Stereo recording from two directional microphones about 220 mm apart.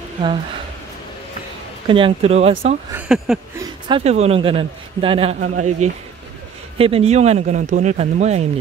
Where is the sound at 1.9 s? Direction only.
25° right (ahead or behind).